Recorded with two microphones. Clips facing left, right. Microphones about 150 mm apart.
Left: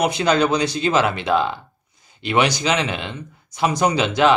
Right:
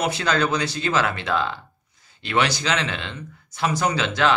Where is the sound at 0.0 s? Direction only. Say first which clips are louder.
Left 5 dB; 15° left (ahead or behind).